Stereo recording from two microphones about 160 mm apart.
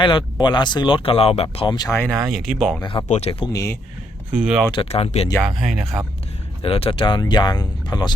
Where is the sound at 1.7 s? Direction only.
25° left (ahead or behind).